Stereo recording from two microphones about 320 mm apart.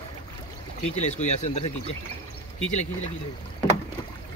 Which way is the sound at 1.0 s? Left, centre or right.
Left.